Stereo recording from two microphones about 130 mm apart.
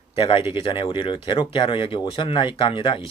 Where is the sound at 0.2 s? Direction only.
40° left (ahead or behind).